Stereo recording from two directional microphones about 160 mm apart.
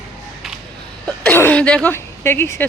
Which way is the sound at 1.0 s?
10° left (ahead or behind).